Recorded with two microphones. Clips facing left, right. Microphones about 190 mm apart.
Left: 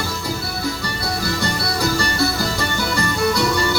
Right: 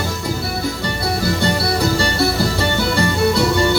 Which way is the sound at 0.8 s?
25° right (ahead or behind).